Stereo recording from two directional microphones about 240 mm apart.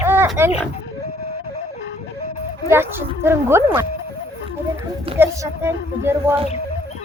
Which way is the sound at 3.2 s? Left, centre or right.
Centre.